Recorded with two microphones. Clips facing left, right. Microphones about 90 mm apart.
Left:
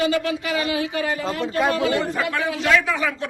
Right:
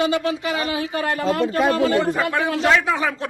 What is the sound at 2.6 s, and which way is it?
Speech, 30° right (ahead or behind).